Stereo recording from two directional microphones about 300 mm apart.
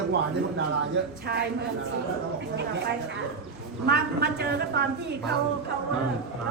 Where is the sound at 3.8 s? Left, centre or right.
Right.